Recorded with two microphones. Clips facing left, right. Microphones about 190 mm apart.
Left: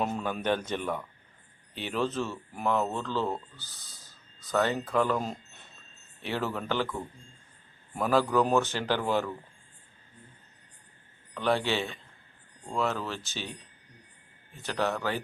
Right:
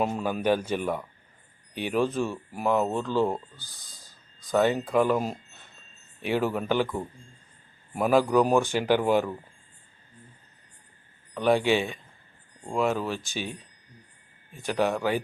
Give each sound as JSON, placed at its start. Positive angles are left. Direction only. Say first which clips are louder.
{"t": 0.0, "sound": "speech", "louder": "right 4 dB", "side_deg": -5}
{"t": 11.3, "sound": "speech", "louder": "right 5 dB", "side_deg": -15}
{"t": 14.5, "sound": "speech", "louder": "right 4 dB", "side_deg": -15}